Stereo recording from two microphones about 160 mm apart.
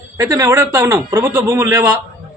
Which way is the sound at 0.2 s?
20° right (ahead or behind).